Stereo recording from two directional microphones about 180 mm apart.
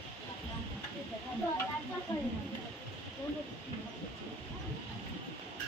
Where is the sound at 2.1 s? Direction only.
25° left (ahead or behind).